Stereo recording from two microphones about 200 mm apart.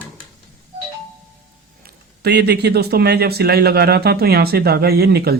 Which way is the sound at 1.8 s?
55° right (ahead or behind).